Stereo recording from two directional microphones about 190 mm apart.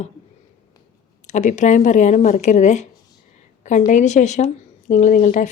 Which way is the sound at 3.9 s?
40° left (ahead or behind).